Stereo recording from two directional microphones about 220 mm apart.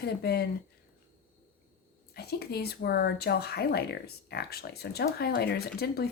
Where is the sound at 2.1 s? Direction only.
45° left (ahead or behind).